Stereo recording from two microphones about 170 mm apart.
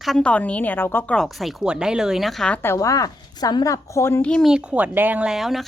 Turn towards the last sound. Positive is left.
turn(degrees=0)  # may be behind; listen again after turning